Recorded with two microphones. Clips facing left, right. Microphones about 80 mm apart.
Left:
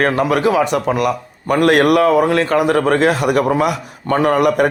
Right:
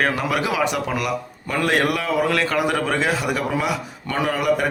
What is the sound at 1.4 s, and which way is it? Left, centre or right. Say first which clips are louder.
Speech: left 8 dB; left.